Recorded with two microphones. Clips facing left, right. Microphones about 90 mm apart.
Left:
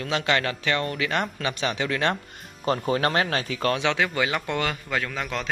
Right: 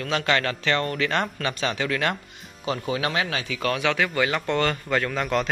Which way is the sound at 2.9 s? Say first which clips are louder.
Left 2 dB; 40° left (ahead or behind).